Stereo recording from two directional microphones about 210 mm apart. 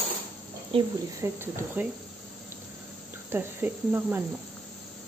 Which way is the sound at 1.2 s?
10° right (ahead or behind).